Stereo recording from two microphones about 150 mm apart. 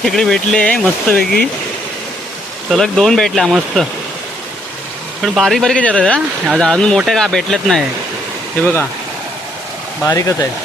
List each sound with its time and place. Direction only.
0.0 s speech: 5° left (ahead or behind)
2.6 s speech: centre (ahead or behind)
5.2 s speech: centre (ahead or behind)
6.1 s speech: 5° right (ahead or behind)
10.0 s speech: 20° left (ahead or behind)